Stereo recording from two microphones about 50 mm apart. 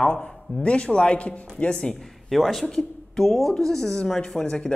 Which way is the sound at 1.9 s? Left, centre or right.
Centre.